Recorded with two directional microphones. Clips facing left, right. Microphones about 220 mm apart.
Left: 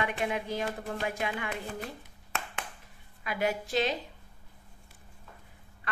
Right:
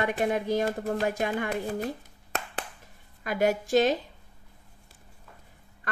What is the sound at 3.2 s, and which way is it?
Speech, 45° right (ahead or behind).